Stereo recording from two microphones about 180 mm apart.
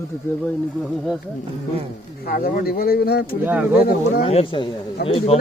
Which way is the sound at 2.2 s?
55° left (ahead or behind).